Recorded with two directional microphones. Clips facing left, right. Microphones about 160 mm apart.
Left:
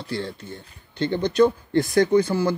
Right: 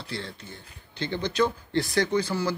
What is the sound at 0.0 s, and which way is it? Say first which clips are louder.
Speech: left 7 dB; 50° left (ahead or behind).